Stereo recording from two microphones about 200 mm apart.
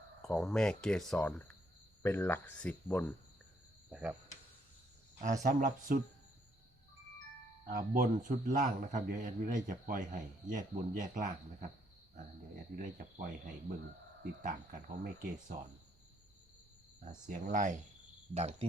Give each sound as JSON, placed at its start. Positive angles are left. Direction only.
{"t": 0.2, "sound": "speech", "side_deg": 0}
{"t": 3.8, "sound": "speech", "side_deg": -5}
{"t": 5.4, "sound": "a man's voice", "side_deg": -40}
{"t": 7.7, "sound": "a man's voice", "side_deg": -45}
{"t": 12.7, "sound": "a man's voice", "side_deg": -40}
{"t": 14.4, "sound": "a man's voice", "side_deg": -40}
{"t": 17.1, "sound": "a man's voice", "side_deg": -40}